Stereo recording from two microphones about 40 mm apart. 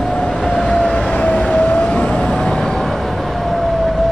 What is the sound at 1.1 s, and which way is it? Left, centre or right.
Vehicle, left.